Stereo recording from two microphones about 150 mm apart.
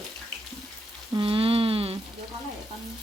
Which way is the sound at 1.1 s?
35° right (ahead or behind).